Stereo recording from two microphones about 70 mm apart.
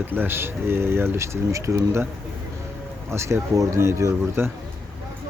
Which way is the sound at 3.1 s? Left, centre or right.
Right.